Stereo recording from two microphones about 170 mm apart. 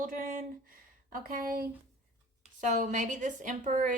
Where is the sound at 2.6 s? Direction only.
45° right (ahead or behind).